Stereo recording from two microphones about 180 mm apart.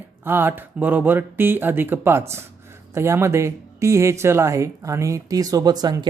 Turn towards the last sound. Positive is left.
turn(degrees=-20)  # may be behind; listen again after turning